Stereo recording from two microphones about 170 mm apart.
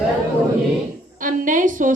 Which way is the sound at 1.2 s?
50° right (ahead or behind).